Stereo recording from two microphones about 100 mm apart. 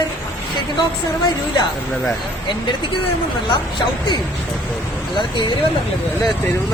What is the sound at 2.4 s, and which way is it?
Speech, 50° left (ahead or behind).